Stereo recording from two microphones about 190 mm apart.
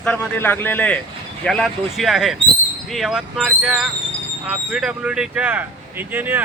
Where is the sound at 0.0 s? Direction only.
5° left (ahead or behind).